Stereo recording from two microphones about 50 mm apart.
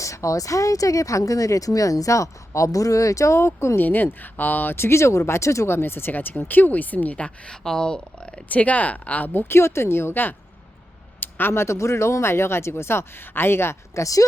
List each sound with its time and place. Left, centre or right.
0.0 s speech: left
3.8 s speech: left
5.6 s a woman's voice: left
7.5 s speech: centre
8.4 s speech: left
9.3 s speech: left
11.2 s a sound: left
11.5 s speech: left